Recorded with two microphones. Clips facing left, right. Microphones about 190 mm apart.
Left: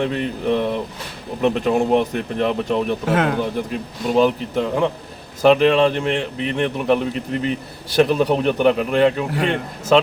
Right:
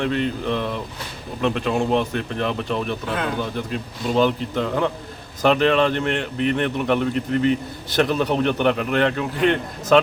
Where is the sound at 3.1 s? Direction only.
75° left (ahead or behind).